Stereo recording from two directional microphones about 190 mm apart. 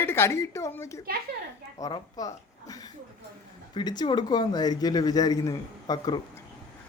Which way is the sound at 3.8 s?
25° left (ahead or behind).